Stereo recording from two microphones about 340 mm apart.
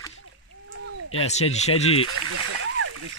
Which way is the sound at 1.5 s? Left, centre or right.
Centre.